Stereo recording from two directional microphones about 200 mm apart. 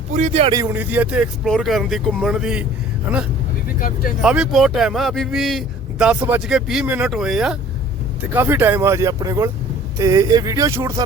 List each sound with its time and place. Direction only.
0.1 s speech: 35° right (ahead or behind)
0.6 s speech: 10° right (ahead or behind)
3.8 s speech: 45° left (ahead or behind)
4.2 s speech: 5° right (ahead or behind)